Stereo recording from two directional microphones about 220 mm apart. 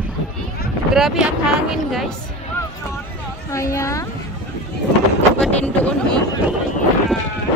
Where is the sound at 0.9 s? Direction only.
Centre (ahead or behind).